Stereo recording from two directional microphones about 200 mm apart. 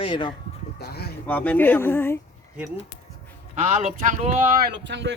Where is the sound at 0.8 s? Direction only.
50° left (ahead or behind).